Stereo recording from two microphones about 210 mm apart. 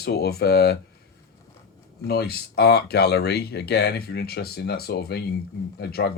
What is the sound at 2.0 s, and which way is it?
Speech, 50° left (ahead or behind).